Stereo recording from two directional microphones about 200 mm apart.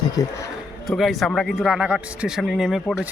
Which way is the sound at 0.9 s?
Centre (ahead or behind).